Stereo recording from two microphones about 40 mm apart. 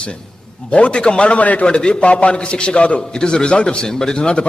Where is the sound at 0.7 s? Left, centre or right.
Left.